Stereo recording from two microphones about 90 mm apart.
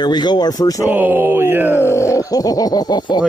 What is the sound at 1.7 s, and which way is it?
Speech, 30° left (ahead or behind).